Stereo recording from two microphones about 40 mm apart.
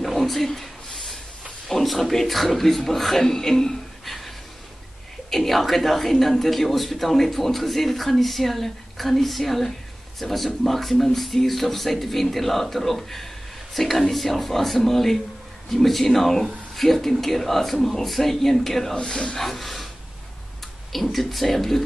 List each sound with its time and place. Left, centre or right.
0.0 s a sound: centre
1.7 s a man's voice: centre
5.3 s a man's voice: centre
18.9 s speech: centre
19.4 s speech: centre
20.9 s a man's voice: centre